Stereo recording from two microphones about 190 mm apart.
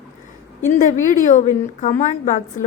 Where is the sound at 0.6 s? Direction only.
40° left (ahead or behind).